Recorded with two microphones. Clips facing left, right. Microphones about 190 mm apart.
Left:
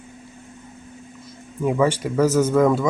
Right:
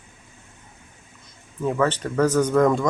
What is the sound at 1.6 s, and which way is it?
Speech, 10° left (ahead or behind).